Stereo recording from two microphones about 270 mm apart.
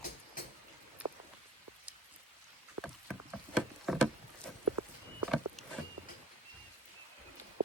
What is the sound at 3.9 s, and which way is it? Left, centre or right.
Rowboat, centre.